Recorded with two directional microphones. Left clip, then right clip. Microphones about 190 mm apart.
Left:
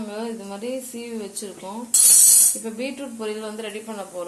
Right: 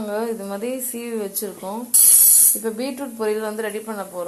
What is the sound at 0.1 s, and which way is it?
A woman's voice, 20° right (ahead or behind).